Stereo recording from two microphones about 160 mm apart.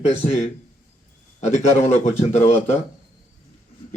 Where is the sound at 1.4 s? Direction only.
45° left (ahead or behind).